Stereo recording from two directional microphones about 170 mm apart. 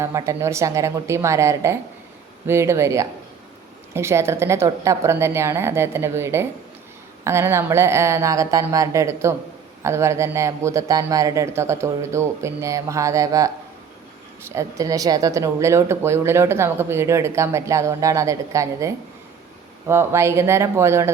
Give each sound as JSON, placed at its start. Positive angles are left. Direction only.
{"t": 0.0, "sound": "speech", "side_deg": -15}